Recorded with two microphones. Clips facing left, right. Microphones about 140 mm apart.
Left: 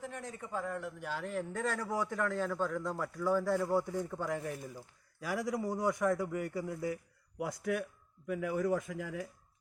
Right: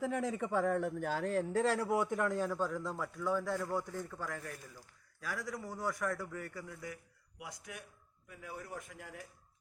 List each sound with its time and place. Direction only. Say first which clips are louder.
0.3 s speech: right 4 dB; 90° right; by 1.3 s 40° right (ahead or behind)
1.4 s a man's voice: right 4 dB; 30° right (ahead or behind); by 7.0 s 30° left (ahead or behind)
7.3 s speech: left 14 dB; 55° left (ahead or behind)
8.3 s a man's voice: left 14 dB; 90° left